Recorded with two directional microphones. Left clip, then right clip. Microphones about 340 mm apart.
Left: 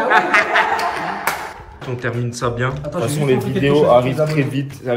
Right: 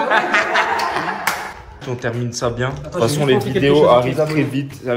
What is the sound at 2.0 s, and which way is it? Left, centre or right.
A man's voice, centre.